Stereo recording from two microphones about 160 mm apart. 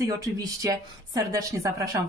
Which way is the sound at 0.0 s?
20° right (ahead or behind).